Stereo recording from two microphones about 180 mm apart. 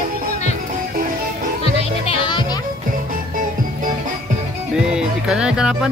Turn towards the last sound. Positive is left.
turn(degrees=-5)  # may be behind; listen again after turning